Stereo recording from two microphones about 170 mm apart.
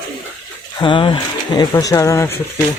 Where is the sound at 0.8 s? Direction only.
30° left (ahead or behind).